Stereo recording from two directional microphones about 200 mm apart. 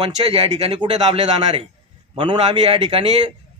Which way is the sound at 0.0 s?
30° right (ahead or behind).